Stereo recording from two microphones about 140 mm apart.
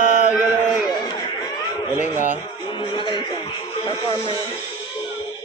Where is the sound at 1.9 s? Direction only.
10° right (ahead or behind).